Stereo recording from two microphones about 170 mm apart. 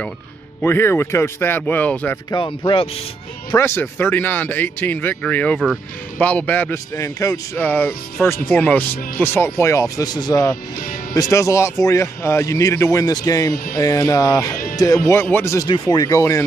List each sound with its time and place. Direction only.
0.6 s a man's voice: 15° left (ahead or behind)
2.3 s speech: 30° left (ahead or behind)
3.5 s a man's voice: 15° left (ahead or behind)